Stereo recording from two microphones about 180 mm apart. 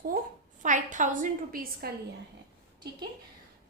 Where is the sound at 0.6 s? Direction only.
45° right (ahead or behind).